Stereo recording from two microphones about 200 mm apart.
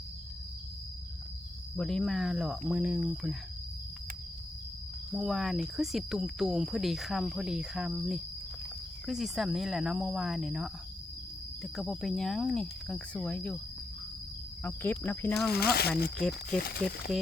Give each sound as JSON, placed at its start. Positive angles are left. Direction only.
{"t": 1.7, "sound": "speech", "side_deg": 5}
{"t": 5.1, "sound": "speech", "side_deg": 0}
{"t": 14.6, "sound": "speech", "side_deg": 10}
{"t": 15.5, "sound": "speech", "side_deg": 50}